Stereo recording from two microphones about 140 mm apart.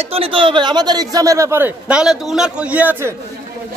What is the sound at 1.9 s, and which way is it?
A man's voice, 5° right (ahead or behind).